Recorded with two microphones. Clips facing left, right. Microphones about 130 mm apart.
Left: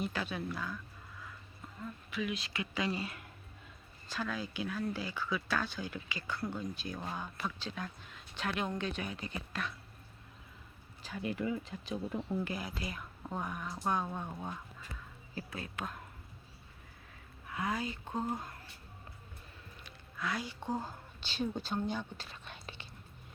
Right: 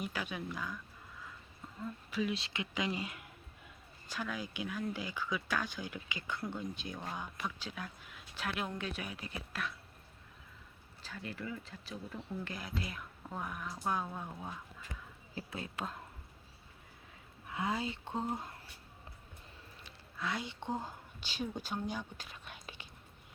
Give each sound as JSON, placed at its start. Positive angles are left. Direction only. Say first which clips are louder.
{"t": 0.0, "sound": "speech", "louder": "left 3 dB", "side_deg": -10}
{"t": 2.0, "sound": "speech", "louder": "right 2 dB", "side_deg": -35}
{"t": 11.0, "sound": "speech", "louder": "left 7 dB", "side_deg": 15}
{"t": 12.5, "sound": "speech", "louder": "left 2 dB", "side_deg": 5}
{"t": 15.4, "sound": "speech", "louder": "even", "side_deg": -20}
{"t": 17.5, "sound": "speech", "louder": "even", "side_deg": -25}
{"t": 19.8, "sound": "a sound", "louder": "left 1 dB", "side_deg": -25}
{"t": 20.7, "sound": "speech", "louder": "left 3 dB", "side_deg": -15}